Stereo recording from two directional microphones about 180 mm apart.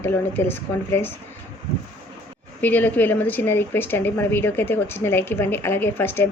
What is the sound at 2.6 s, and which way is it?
Speech, 10° left (ahead or behind).